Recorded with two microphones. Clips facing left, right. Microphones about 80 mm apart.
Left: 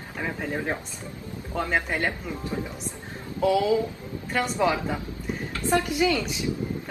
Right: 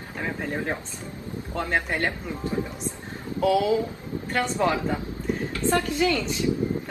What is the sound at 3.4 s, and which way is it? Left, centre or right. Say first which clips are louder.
Speech: even; centre.